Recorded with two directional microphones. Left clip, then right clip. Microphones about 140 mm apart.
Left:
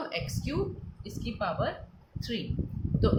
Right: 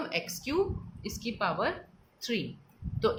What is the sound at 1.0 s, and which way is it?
A woman's voice, 55° right (ahead or behind).